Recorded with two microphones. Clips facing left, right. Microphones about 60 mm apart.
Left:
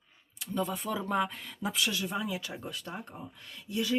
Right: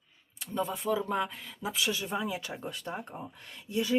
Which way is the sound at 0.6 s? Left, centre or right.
Centre.